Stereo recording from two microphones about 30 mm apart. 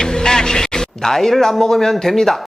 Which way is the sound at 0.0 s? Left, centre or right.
Centre.